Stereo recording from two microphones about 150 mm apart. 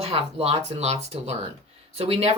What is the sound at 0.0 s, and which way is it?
Speech, 40° right (ahead or behind).